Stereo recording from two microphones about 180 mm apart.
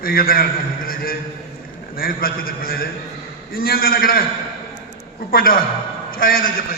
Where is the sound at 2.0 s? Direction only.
55° left (ahead or behind).